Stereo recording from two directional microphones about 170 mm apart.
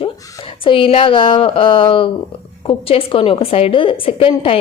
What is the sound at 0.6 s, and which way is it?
A woman's voice, 30° left (ahead or behind).